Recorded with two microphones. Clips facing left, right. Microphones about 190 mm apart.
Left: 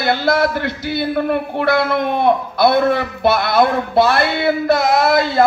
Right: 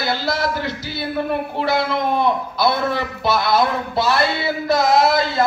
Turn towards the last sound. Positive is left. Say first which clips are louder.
# left 2 dB
turn(degrees=60)  # may be behind; listen again after turning